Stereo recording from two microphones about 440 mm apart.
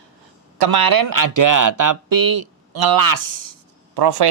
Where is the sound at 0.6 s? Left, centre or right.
Right.